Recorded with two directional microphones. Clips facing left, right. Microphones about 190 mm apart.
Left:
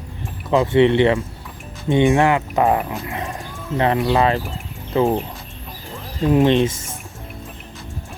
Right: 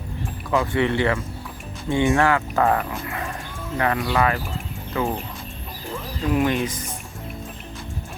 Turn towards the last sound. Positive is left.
turn(degrees=25)  # may be behind; listen again after turning